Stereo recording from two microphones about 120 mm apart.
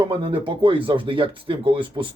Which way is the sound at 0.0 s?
45° right (ahead or behind).